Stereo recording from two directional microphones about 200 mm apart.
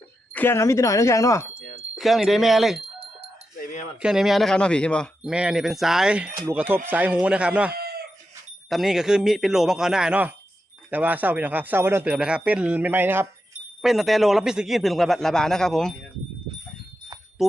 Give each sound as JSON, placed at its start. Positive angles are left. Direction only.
{"t": 0.3, "sound": "speech", "side_deg": 10}
{"t": 2.0, "sound": "a man's voice", "side_deg": 0}
{"t": 3.6, "sound": "a sound", "side_deg": 40}
{"t": 4.0, "sound": "a man's voice", "side_deg": 0}
{"t": 7.7, "sound": "chicken", "side_deg": -50}
{"t": 8.7, "sound": "a man's voice", "side_deg": 0}